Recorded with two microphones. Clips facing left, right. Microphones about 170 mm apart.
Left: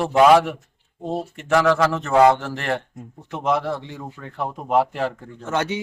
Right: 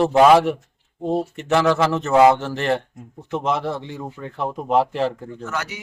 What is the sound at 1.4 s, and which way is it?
Speech, 25° right (ahead or behind).